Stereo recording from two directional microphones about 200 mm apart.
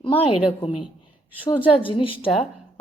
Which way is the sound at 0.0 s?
25° left (ahead or behind).